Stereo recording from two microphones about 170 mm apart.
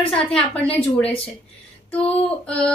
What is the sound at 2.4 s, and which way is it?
Speech, 5° left (ahead or behind).